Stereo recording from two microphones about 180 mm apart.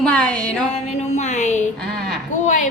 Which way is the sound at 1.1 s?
40° left (ahead or behind).